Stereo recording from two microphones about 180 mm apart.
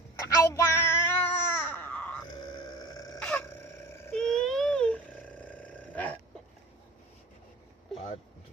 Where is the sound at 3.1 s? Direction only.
5° left (ahead or behind).